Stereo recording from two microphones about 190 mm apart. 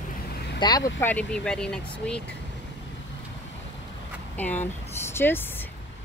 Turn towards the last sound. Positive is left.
turn(degrees=10)  # may be behind; listen again after turning